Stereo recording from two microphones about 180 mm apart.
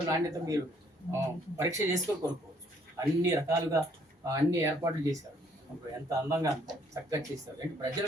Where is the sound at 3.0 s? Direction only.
15° right (ahead or behind).